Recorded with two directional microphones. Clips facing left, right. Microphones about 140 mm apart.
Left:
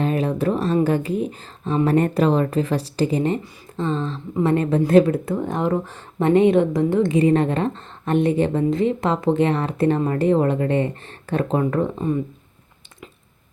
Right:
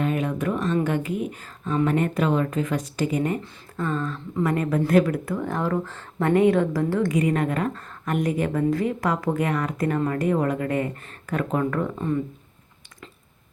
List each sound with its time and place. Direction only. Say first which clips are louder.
0.0 s speech: left 4 dB; 35° left (ahead or behind)